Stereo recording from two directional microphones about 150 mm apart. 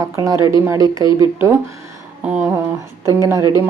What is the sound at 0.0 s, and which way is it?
A woman's voice, 20° right (ahead or behind).